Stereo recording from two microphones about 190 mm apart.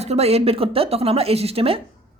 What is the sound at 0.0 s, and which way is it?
A woman's voice, 35° right (ahead or behind).